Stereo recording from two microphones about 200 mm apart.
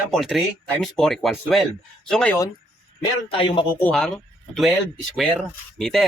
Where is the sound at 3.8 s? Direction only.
5° left (ahead or behind).